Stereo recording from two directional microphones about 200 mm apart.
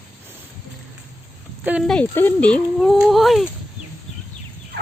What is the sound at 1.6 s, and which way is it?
Speech, centre (ahead or behind).